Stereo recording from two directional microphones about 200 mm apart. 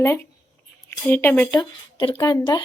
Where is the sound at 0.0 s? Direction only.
15° left (ahead or behind).